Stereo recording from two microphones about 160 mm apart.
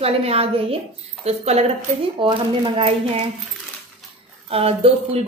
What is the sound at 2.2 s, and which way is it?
A woman's voice, 30° right (ahead or behind).